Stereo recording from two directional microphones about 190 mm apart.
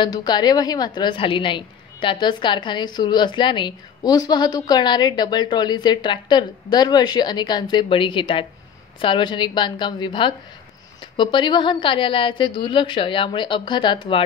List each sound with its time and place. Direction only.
0.0 s a woman's voice: 20° left (ahead or behind)